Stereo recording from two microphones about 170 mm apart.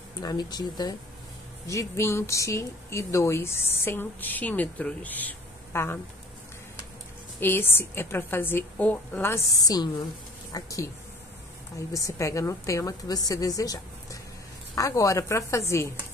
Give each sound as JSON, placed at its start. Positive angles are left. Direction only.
{"t": 0.2, "sound": "a woman's voice", "side_deg": 25}
{"t": 7.3, "sound": "a woman's voice", "side_deg": 15}
{"t": 11.9, "sound": "a woman's voice", "side_deg": 20}
{"t": 13.3, "sound": "a sound", "side_deg": 20}
{"t": 14.8, "sound": "speech", "side_deg": 20}